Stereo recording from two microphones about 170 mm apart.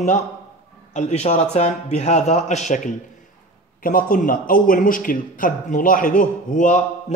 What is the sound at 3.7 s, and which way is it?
A man's voice, 55° left (ahead or behind).